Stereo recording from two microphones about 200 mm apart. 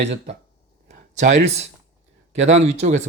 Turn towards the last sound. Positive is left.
turn(degrees=-35)  # may be behind; listen again after turning